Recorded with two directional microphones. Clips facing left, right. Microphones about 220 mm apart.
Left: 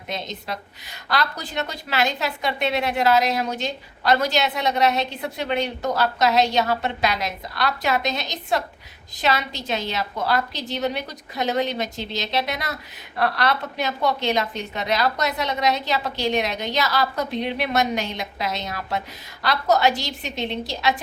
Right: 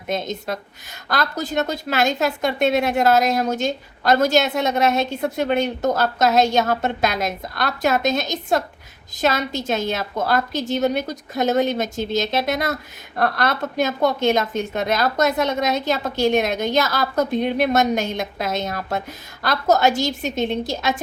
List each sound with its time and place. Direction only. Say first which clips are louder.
0.1 s a woman's voice: right 6 dB; 50° right (ahead or behind)